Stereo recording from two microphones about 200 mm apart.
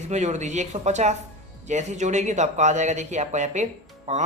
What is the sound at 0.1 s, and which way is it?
Speech, 35° right (ahead or behind).